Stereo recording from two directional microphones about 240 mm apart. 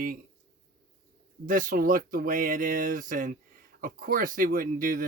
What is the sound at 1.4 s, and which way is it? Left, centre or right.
Speech, right.